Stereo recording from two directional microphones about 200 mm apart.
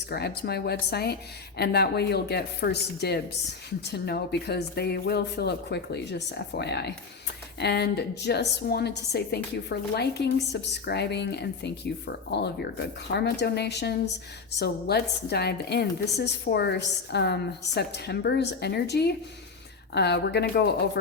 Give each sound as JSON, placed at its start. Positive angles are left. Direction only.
{"t": 0.1, "sound": "a woman's voice", "side_deg": 55}